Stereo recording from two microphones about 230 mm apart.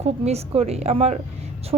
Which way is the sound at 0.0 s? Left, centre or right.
Right.